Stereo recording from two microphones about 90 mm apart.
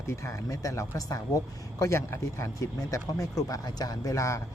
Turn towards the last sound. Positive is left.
turn(degrees=35)  # may be behind; listen again after turning